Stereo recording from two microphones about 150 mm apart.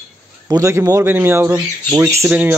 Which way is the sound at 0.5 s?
20° right (ahead or behind).